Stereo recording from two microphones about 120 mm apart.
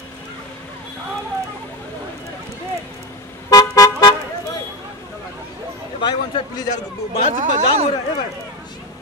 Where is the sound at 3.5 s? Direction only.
30° left (ahead or behind).